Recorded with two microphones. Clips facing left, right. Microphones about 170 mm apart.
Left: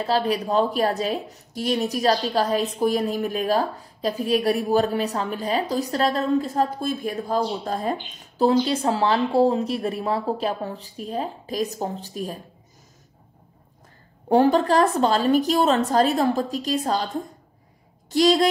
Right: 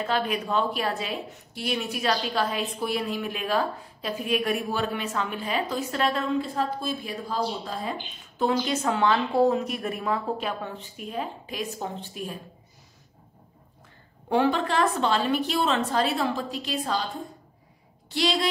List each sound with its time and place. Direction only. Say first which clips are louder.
0.0 s a woman's voice: left 4 dB; 35° left (ahead or behind)
14.3 s a woman's voice: left 6 dB; 40° left (ahead or behind)
18.1 s a woman's voice: left 8 dB; 45° left (ahead or behind)